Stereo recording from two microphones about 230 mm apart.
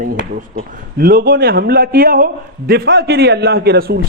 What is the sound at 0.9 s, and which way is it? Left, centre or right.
A man's voice, right.